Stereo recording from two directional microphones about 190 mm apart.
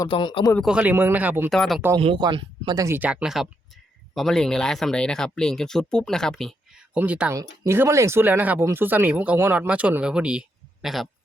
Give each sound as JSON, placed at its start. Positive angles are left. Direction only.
{"t": 0.0, "sound": "speech", "side_deg": 25}
{"t": 0.6, "sound": "speech", "side_deg": -5}
{"t": 2.0, "sound": "speech", "side_deg": -25}